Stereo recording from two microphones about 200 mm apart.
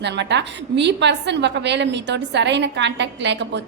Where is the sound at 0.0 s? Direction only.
60° right (ahead or behind).